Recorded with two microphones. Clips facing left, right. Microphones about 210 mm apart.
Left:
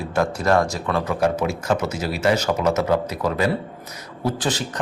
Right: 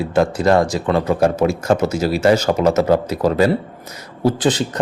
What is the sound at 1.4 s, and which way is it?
A man's voice, 45° right (ahead or behind).